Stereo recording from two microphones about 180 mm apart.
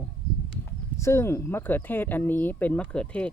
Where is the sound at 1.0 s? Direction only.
15° left (ahead or behind).